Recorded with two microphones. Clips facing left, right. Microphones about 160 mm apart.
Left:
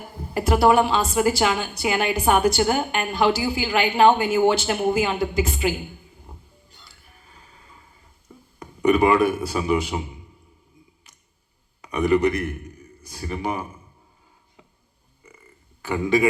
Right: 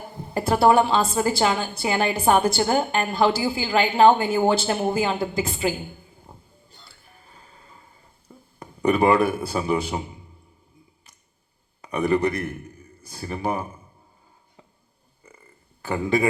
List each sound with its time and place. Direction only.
0.1 s a woman's voice: 25° right (ahead or behind)
7.5 s a sound: 30° right (ahead or behind)
8.8 s a woman's voice: 30° right (ahead or behind)
11.8 s a man's voice: 30° right (ahead or behind)